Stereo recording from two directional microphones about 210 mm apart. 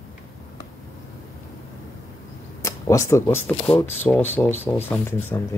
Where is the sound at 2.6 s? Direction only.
15° left (ahead or behind).